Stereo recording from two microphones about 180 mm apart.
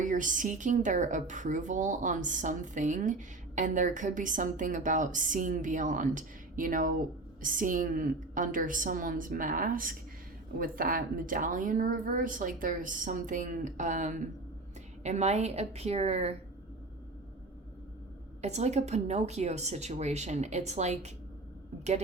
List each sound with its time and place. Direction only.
0.0 s a woman's voice: 45° right (ahead or behind)
18.4 s a woman's voice: 40° right (ahead or behind)